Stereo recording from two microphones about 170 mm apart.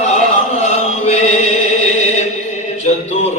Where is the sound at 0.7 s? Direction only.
40° left (ahead or behind).